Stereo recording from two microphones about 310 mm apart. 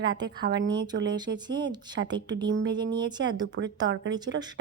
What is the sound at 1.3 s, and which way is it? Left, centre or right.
Speech, centre.